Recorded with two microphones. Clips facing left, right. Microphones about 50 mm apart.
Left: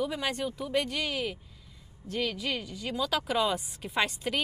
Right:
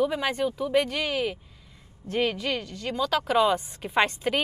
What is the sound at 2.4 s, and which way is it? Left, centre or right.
A woman's voice, centre.